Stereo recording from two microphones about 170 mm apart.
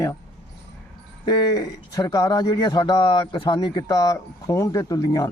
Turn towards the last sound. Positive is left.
turn(degrees=20)  # may be behind; listen again after turning